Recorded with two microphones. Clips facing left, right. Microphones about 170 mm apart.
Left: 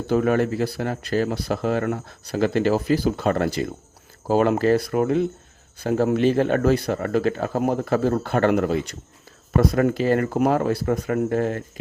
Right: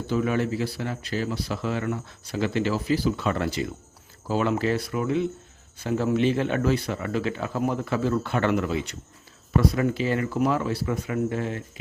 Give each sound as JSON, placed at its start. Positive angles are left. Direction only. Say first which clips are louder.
{"t": 0.1, "sound": "speech", "louder": "left 5 dB", "side_deg": 50}